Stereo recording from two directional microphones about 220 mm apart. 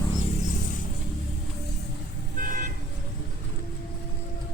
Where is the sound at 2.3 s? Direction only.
40° right (ahead or behind).